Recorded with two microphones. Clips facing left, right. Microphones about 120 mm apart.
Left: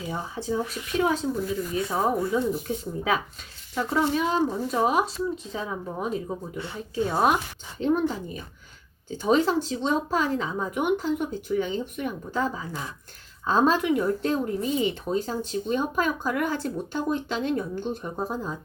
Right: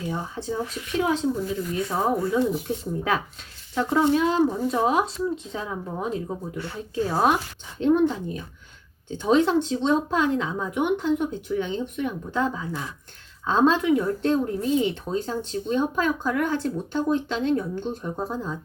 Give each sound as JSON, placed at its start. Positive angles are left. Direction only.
{"t": 0.0, "sound": "speech", "side_deg": 5}
{"t": 2.4, "sound": "speech", "side_deg": -80}
{"t": 2.6, "sound": "speech", "side_deg": 0}